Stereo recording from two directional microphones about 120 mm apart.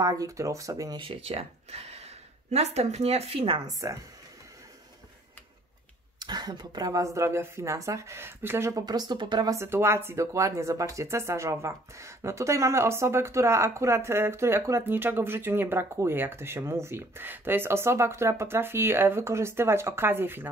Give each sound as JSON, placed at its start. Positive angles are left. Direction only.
{"t": 0.0, "sound": "speech", "side_deg": -30}
{"t": 0.9, "sound": "speech", "side_deg": -50}
{"t": 3.6, "sound": "speech", "side_deg": -25}
{"t": 6.1, "sound": "speech", "side_deg": -35}
{"t": 9.6, "sound": "speech", "side_deg": -20}